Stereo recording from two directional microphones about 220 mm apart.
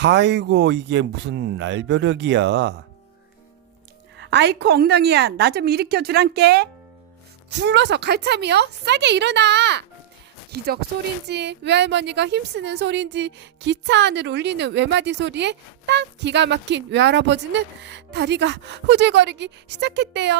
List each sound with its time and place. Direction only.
0.0 s a woman's voice: 50° right (ahead or behind)
4.2 s a woman's voice: 50° right (ahead or behind)